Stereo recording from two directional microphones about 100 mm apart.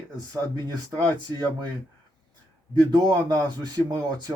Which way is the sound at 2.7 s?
45° right (ahead or behind).